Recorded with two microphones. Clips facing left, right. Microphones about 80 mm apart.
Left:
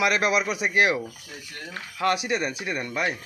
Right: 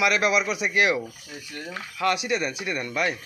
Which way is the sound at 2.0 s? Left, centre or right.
Left.